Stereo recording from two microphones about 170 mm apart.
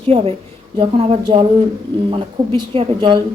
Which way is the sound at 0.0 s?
35° right (ahead or behind).